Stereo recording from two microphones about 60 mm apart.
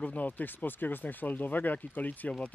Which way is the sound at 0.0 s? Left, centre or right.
Left.